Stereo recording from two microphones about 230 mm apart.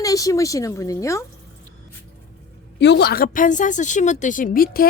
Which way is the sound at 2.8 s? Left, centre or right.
Left.